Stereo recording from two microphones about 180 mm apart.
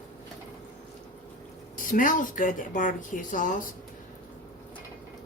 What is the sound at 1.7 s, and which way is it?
Speech, 50° left (ahead or behind).